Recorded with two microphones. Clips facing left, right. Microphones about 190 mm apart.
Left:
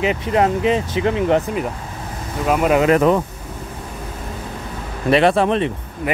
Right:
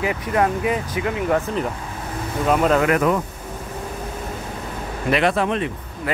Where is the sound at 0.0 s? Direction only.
20° left (ahead or behind).